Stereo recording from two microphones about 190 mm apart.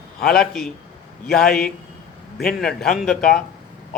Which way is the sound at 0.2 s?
50° left (ahead or behind).